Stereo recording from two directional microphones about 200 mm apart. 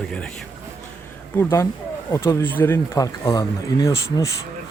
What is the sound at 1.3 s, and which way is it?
Speech, 15° left (ahead or behind).